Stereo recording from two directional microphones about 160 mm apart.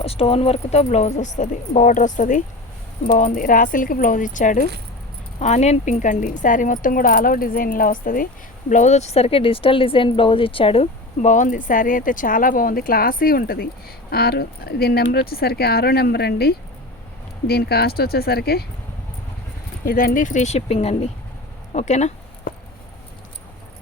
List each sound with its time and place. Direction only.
0.0 s a woman's voice: 40° left (ahead or behind); by 8.3 s 60° left (ahead or behind)
8.7 s speech: 45° left (ahead or behind); by 18.6 s 80° left
19.8 s speech: 65° left (ahead or behind); by 22.1 s 45° left (ahead or behind)